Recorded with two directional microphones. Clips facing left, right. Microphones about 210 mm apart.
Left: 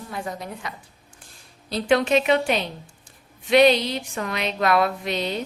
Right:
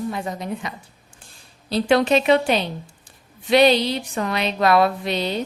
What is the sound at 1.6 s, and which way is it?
Speech, 30° right (ahead or behind).